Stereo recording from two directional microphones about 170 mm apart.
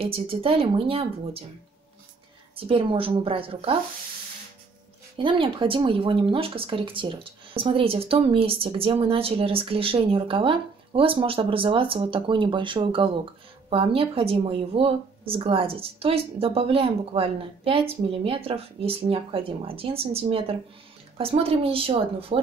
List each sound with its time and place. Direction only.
0.0 s speech: 35° right (ahead or behind)
2.5 s speech: 35° right (ahead or behind)
5.1 s speech: 30° right (ahead or behind)